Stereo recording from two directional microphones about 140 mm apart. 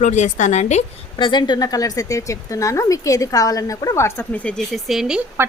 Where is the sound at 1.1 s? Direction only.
35° left (ahead or behind); by 5.2 s 5° right (ahead or behind).